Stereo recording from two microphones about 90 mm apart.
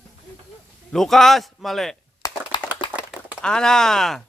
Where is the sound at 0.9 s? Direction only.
5° left (ahead or behind).